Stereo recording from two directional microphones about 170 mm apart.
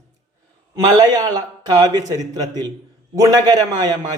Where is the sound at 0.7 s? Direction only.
20° right (ahead or behind).